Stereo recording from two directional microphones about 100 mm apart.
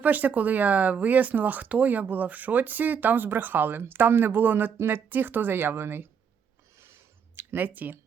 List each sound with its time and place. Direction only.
0.0 s speech: 15° right (ahead or behind)
7.3 s speech: 20° right (ahead or behind)